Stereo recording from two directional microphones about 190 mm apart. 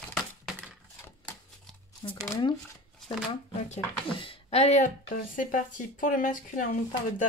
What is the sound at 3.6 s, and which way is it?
Speech, 30° left (ahead or behind).